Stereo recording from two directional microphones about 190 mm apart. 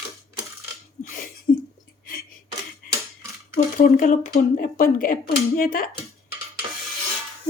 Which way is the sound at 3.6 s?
40° left (ahead or behind).